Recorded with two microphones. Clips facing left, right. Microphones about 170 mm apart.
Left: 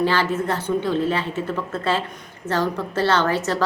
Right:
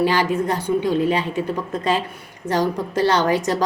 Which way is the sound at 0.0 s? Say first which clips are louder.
Right 2 dB; 15° right (ahead or behind).